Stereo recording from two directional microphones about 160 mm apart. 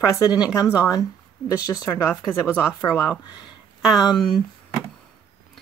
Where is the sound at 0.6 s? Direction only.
10° right (ahead or behind).